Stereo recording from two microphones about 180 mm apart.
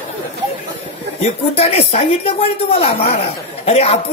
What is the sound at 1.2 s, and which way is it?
Speech, 35° left (ahead or behind).